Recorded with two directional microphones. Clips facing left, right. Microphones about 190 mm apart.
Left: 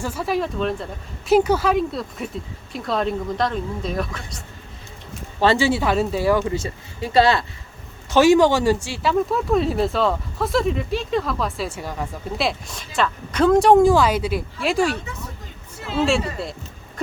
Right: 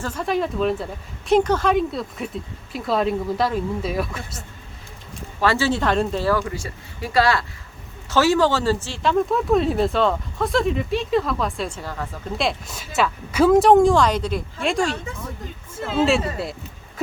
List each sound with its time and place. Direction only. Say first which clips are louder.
0.0 s speech: even; 5° left (ahead or behind)
5.4 s speech: left 2 dB; 20° left (ahead or behind)
12.4 s speech: even; centre (ahead or behind)
16.0 s speech: right 1 dB; centre (ahead or behind)